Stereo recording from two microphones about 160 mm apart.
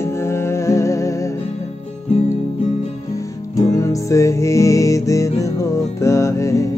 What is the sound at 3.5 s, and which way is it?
Music, 20° left (ahead or behind).